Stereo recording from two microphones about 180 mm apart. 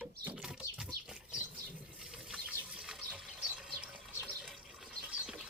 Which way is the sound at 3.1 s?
5° right (ahead or behind).